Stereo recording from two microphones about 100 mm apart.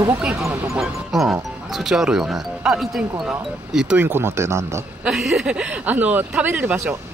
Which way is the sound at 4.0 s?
25° right (ahead or behind).